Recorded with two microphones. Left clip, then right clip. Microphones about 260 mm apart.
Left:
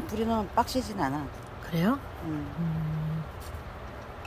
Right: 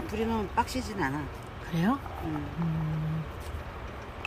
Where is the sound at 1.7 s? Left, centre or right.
Centre.